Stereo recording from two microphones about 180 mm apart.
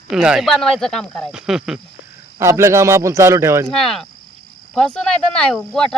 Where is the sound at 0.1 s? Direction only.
5° right (ahead or behind).